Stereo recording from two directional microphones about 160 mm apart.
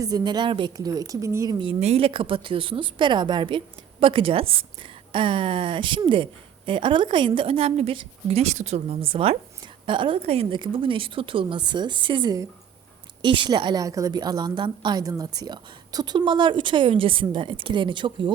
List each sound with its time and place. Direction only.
0.0 s a woman's voice: 25° right (ahead or behind)
1.5 s a woman's voice: 35° right (ahead or behind)